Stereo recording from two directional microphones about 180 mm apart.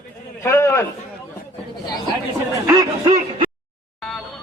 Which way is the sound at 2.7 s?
20° right (ahead or behind).